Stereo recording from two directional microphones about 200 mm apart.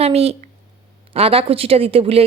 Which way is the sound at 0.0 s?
30° right (ahead or behind).